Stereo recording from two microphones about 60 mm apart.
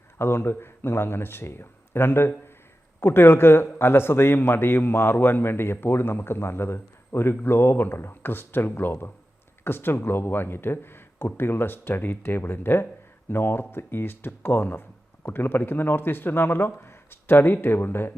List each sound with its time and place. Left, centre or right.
0.2 s speech: left